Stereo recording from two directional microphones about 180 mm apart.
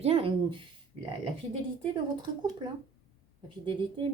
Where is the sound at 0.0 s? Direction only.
35° right (ahead or behind).